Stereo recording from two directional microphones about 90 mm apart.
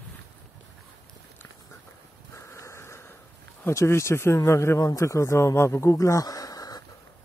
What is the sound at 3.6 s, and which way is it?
Speech, 30° left (ahead or behind).